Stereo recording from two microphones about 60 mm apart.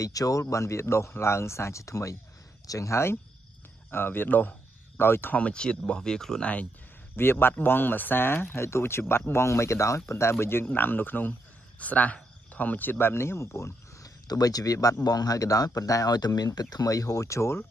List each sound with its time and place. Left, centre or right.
0.0 s speech: left
0.4 s speech: left
3.9 s speech: left
5.3 s speech: centre
6.4 s speech: left
7.2 s speech: left
10.3 s speech: left
14.0 s speech: left